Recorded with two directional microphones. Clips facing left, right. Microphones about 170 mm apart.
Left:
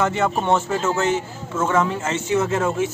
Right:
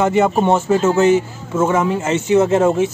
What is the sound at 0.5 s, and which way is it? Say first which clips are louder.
Speech: right 6 dB; 10° right (ahead or behind).